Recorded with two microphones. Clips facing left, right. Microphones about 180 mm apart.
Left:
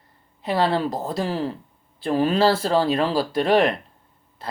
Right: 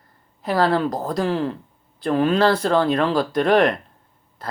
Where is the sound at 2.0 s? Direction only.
35° left (ahead or behind).